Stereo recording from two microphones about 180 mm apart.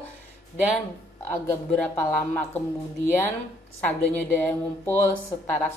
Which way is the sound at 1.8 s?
10° left (ahead or behind).